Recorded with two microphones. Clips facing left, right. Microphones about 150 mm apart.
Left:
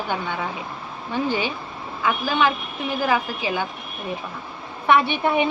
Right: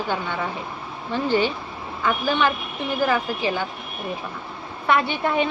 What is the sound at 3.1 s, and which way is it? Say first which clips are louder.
Speech: left 2 dB; 15° left (ahead or behind).